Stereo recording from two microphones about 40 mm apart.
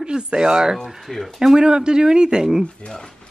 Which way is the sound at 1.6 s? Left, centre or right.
Right.